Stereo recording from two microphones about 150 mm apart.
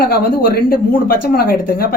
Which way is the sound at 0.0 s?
90° left.